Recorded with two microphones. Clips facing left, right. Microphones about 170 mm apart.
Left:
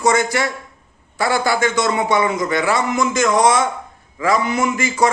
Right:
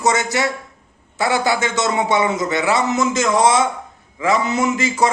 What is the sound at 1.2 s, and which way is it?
A man's voice, 20° right (ahead or behind).